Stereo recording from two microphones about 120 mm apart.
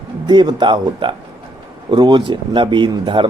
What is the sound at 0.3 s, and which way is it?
Speech, 40° right (ahead or behind).